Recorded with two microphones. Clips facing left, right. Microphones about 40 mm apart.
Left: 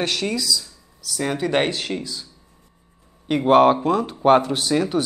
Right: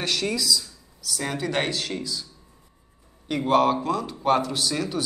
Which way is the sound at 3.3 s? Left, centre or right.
Left.